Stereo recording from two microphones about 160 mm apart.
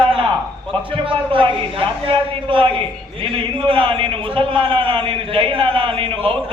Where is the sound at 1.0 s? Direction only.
35° right (ahead or behind).